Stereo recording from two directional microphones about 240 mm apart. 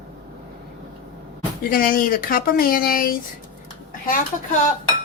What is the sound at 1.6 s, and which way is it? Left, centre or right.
Speech, left.